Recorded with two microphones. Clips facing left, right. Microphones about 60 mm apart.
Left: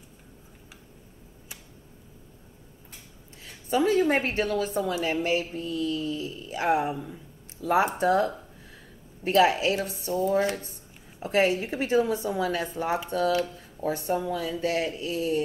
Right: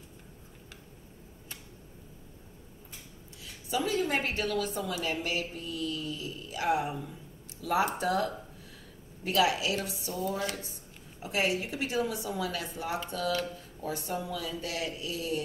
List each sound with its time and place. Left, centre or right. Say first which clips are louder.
3.4 s a woman's voice: left 8 dB; left
6.9 s a woman's voice: left 5 dB; left